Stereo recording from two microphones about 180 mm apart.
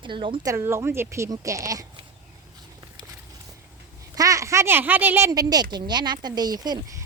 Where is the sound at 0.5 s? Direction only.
15° right (ahead or behind).